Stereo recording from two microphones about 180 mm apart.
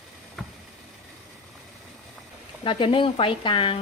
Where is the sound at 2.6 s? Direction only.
30° left (ahead or behind).